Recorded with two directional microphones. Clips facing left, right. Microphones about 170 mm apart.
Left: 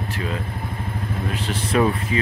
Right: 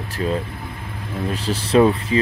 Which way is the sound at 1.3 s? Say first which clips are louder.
Right 6 dB; 35° right (ahead or behind).